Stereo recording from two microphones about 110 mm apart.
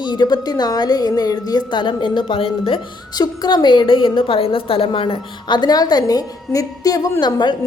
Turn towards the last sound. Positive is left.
turn(degrees=40)  # may be behind; listen again after turning